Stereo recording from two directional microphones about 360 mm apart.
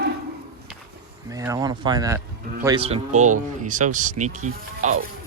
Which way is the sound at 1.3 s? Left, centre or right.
Centre.